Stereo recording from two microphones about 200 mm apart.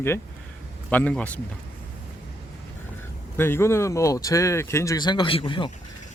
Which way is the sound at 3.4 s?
10° left (ahead or behind).